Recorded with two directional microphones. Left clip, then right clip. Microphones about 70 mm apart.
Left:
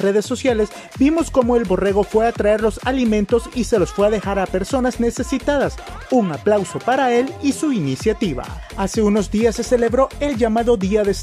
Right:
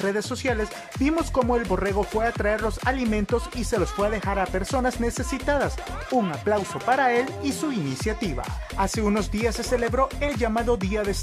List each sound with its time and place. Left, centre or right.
0.1 s speech: left
6.0 s speech: centre
6.4 s speech: left
9.1 s speech: left